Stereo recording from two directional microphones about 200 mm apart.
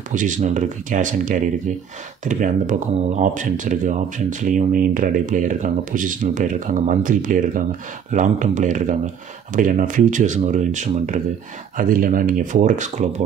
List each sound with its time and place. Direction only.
0.1 s speech: 40° right (ahead or behind)